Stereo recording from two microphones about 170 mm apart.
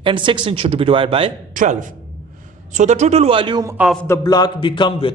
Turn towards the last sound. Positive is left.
turn(degrees=30)  # may be behind; listen again after turning